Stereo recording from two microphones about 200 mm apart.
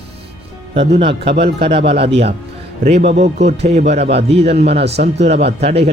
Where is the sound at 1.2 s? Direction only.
55° right (ahead or behind).